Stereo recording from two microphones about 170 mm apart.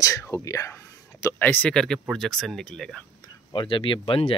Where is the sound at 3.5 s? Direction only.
30° left (ahead or behind).